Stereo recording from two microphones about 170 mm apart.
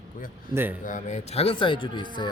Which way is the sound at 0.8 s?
45° left (ahead or behind).